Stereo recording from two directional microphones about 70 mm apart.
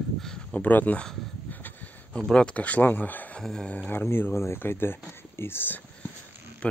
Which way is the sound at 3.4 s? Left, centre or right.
Centre.